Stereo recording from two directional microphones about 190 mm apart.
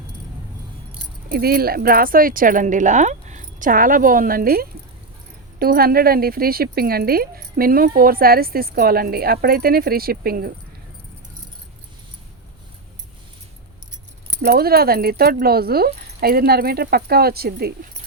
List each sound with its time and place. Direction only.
1.3 s speech: 55° right (ahead or behind)
14.4 s speech: 55° right (ahead or behind)